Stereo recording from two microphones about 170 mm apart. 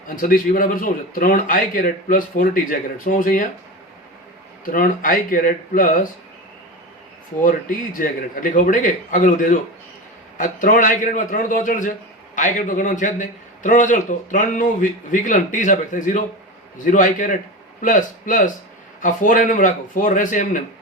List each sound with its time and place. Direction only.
0.2 s a man's voice: 55° left (ahead or behind)
4.6 s a man's voice: 55° left (ahead or behind)
7.4 s a man's voice: 55° left (ahead or behind)